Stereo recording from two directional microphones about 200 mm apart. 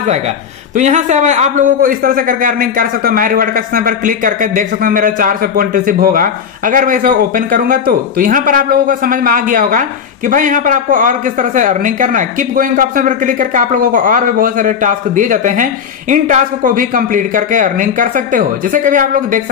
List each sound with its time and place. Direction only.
0.7 s a man's voice: 35° right (ahead or behind)